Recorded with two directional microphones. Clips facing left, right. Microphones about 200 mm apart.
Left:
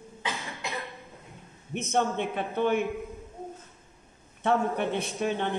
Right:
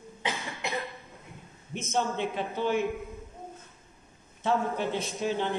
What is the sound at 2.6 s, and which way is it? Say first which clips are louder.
Speech: left 3 dB; 55° left (ahead or behind).